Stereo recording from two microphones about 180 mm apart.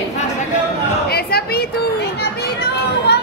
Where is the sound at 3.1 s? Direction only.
65° left (ahead or behind).